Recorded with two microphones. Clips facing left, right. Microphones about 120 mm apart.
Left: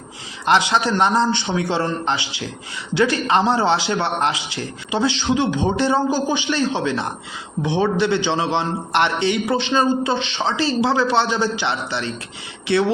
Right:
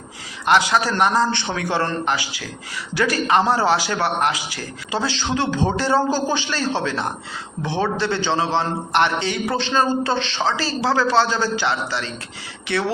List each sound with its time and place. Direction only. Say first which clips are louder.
0.4 s a man's voice: even; 25° left (ahead or behind)